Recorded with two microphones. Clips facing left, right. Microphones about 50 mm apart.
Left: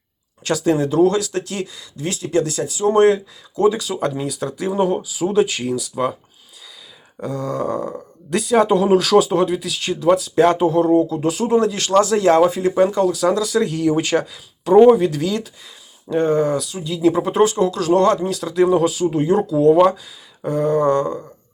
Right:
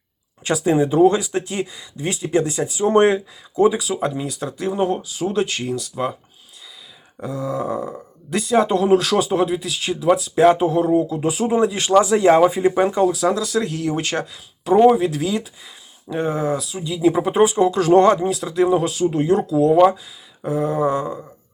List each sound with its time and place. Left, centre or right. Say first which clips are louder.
0.4 s speech: even; centre
3.8 s speech: left 1 dB; centre
7.2 s speech: left 1 dB; centre; by 13.1 s right
13.1 s speech: left 2 dB; centre
17.7 s speech: right 2 dB; right
18.3 s speech: left 1 dB; centre